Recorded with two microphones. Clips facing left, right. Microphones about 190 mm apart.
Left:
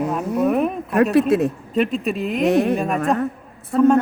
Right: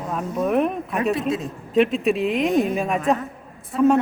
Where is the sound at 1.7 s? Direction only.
Centre (ahead or behind).